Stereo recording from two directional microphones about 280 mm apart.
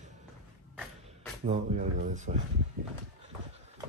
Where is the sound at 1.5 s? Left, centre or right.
Right.